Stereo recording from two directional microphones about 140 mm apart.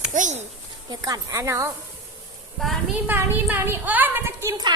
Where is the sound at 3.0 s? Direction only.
15° right (ahead or behind).